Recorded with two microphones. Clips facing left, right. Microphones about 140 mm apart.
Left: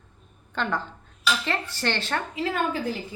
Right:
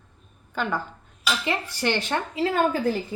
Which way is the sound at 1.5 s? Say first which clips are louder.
Right 2 dB; 15° right (ahead or behind).